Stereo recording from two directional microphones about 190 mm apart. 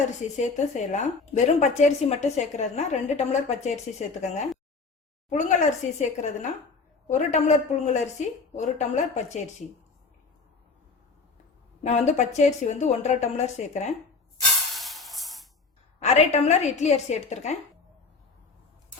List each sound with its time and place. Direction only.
0.2 s a woman's voice: 40° left (ahead or behind)
11.8 s a woman's voice: 35° left (ahead or behind)
14.8 s music: centre (ahead or behind)
16.0 s a woman's voice: 35° left (ahead or behind)